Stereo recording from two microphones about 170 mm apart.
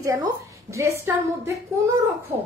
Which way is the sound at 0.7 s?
15° right (ahead or behind).